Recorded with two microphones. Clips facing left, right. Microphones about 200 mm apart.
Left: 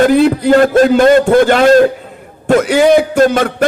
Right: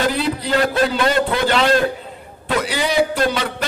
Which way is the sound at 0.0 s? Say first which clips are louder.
Left 11 dB; 50° left (ahead or behind).